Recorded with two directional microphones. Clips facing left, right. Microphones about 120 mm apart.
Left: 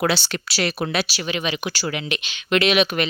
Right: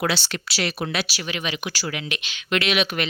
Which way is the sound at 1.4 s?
30° left (ahead or behind).